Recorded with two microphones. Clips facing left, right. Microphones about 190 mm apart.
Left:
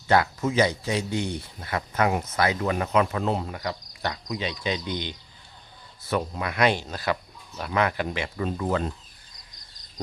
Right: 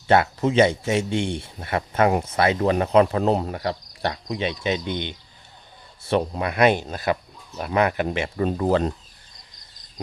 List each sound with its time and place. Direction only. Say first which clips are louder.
0.1 s speech: right 4 dB; 25° right (ahead or behind)
8.4 s speech: right 6 dB; 40° right (ahead or behind)